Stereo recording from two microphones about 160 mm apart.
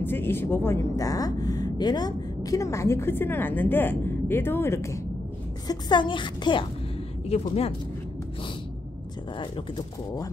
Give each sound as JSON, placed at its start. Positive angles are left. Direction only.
{"t": 0.0, "sound": "a woman's voice", "side_deg": 15}
{"t": 5.7, "sound": "speech", "side_deg": 30}
{"t": 9.4, "sound": "speech", "side_deg": 30}